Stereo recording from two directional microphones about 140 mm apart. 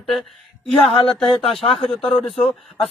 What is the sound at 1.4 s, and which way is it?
Speech, 40° left (ahead or behind).